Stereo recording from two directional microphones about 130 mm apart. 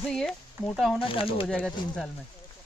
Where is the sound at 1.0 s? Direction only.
45° left (ahead or behind).